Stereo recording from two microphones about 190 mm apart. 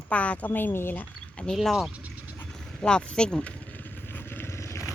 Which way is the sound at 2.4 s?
5° left (ahead or behind).